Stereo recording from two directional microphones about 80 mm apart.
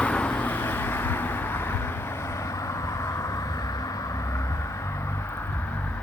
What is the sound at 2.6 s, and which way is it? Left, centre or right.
Vehicle, left.